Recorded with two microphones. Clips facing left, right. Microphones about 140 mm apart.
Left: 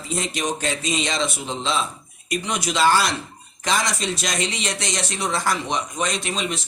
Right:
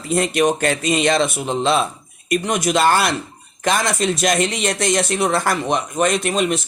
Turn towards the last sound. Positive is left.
turn(degrees=-55)  # may be behind; listen again after turning